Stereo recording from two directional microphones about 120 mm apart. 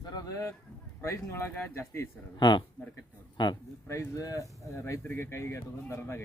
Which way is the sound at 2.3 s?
40° left (ahead or behind).